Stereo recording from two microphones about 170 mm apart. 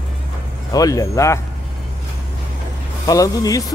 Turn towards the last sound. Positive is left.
turn(degrees=20)  # may be behind; listen again after turning